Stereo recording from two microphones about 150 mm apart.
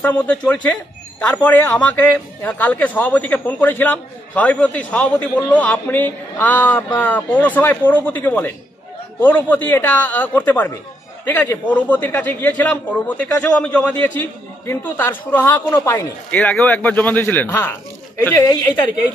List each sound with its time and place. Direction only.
0.0 s a man's voice: 10° left (ahead or behind)